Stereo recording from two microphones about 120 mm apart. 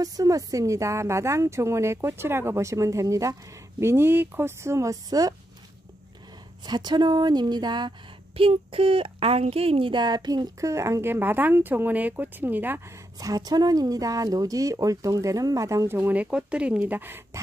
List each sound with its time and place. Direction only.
0.0 s a woman's voice: 30° right (ahead or behind)
6.6 s speech: 35° right (ahead or behind)
8.4 s a woman's voice: 50° right (ahead or behind); by 17.4 s 20° right (ahead or behind)